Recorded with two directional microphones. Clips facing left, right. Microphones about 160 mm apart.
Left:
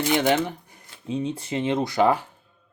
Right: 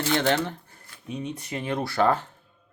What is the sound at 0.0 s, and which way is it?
Speech, 15° left (ahead or behind).